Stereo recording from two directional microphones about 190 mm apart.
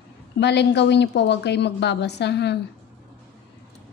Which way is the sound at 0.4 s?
65° left (ahead or behind).